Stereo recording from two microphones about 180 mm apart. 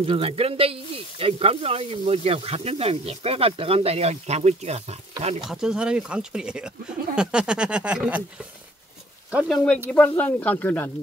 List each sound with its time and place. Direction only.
0.0 s speech: 30° right (ahead or behind)
5.5 s speech: 5° right (ahead or behind)
9.3 s speech: centre (ahead or behind)